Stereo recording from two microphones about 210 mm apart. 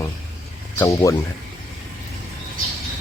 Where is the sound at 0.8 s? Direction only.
15° left (ahead or behind).